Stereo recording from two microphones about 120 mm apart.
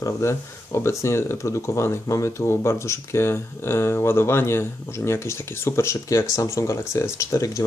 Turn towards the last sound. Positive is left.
turn(degrees=25)  # may be behind; listen again after turning